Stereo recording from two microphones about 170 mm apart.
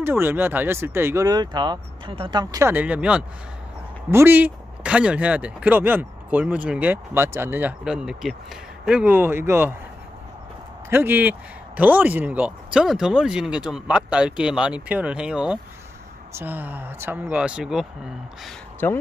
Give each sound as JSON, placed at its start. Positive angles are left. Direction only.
{"t": 0.0, "sound": "speech", "side_deg": -15}
{"t": 2.7, "sound": "speech", "side_deg": -10}
{"t": 10.9, "sound": "speech", "side_deg": -10}
{"t": 18.8, "sound": "speech", "side_deg": 10}